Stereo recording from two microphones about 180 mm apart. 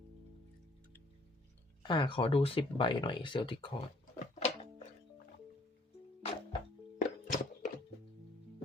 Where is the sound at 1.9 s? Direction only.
25° left (ahead or behind).